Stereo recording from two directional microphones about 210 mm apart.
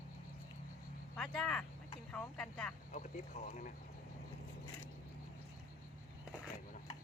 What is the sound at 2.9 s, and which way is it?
Speech, 35° left (ahead or behind).